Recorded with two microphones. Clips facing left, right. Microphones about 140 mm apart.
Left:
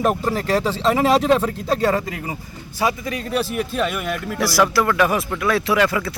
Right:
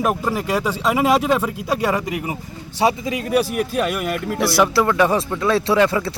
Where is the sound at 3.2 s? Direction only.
10° right (ahead or behind).